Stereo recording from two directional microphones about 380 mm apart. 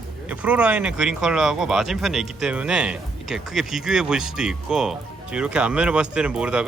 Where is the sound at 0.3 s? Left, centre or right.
Centre.